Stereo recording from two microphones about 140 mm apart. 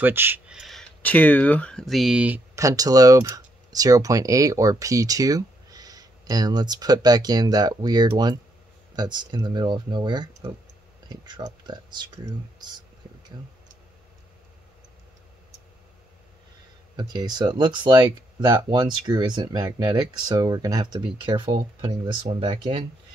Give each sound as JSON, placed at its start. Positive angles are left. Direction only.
{"t": 0.0, "sound": "speech", "side_deg": -15}
{"t": 0.5, "sound": "a sound", "side_deg": 0}
{"t": 1.0, "sound": "speech", "side_deg": 10}
{"t": 2.6, "sound": "speech", "side_deg": -25}
{"t": 16.9, "sound": "speech", "side_deg": -30}